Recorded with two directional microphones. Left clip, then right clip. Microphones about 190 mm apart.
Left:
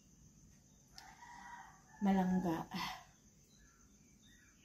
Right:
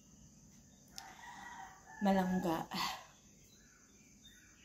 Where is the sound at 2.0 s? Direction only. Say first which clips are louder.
Right 3 dB; 20° left (ahead or behind).